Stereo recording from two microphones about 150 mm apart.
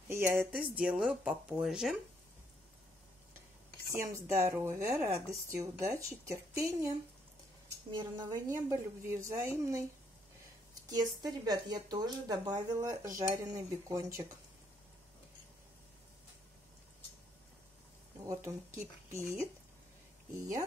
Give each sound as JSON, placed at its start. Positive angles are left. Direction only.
{"t": 0.1, "sound": "speech", "side_deg": -15}
{"t": 4.0, "sound": "a woman's voice", "side_deg": -20}
{"t": 7.9, "sound": "a woman's voice", "side_deg": -30}
{"t": 8.5, "sound": "a woman's voice", "side_deg": -20}
{"t": 10.9, "sound": "a woman's voice", "side_deg": -25}
{"t": 13.0, "sound": "speech", "side_deg": -60}
{"t": 13.4, "sound": "a woman's voice", "side_deg": -20}
{"t": 18.2, "sound": "speech", "side_deg": -20}